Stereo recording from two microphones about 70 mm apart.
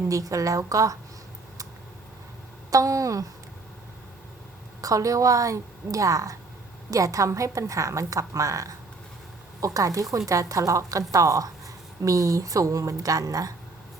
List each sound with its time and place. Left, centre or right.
0.1 s a woman's voice: right
2.6 s a woman's voice: right
4.8 s a woman's voice: right